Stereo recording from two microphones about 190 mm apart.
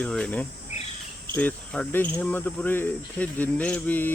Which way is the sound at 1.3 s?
10° left (ahead or behind).